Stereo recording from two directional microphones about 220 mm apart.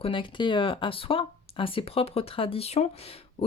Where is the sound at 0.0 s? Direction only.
20° left (ahead or behind).